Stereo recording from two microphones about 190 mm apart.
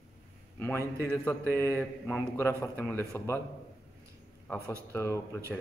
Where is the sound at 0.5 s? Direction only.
10° left (ahead or behind).